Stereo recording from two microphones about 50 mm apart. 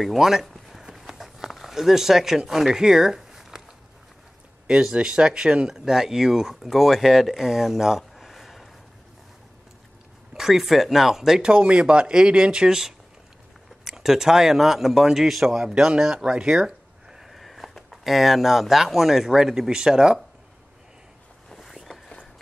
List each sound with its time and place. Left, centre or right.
0.0 s a sound: centre
4.6 s speech: centre
10.3 s speech: centre
11.4 s speech: centre
21.5 s vehicle: centre